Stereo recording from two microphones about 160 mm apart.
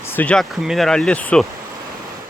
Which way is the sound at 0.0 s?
10° left (ahead or behind).